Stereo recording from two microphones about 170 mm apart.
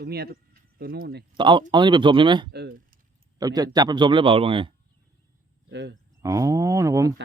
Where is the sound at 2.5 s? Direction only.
65° right (ahead or behind).